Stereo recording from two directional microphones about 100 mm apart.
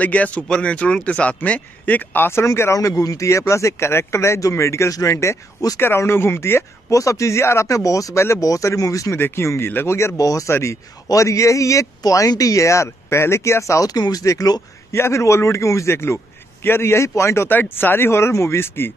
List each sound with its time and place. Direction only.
0.0 s a man's voice: 15° left (ahead or behind)